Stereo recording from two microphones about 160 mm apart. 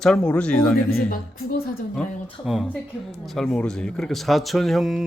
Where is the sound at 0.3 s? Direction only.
5° left (ahead or behind).